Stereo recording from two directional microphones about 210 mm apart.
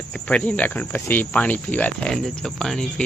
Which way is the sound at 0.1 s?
5° left (ahead or behind).